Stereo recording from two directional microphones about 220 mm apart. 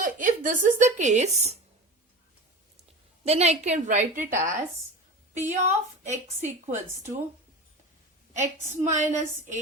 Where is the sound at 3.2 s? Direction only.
30° right (ahead or behind).